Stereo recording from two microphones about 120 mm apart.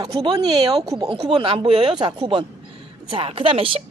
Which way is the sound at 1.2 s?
50° right (ahead or behind).